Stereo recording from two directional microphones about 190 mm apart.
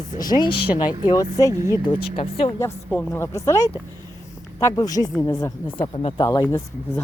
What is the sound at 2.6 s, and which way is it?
Speech, 10° left (ahead or behind).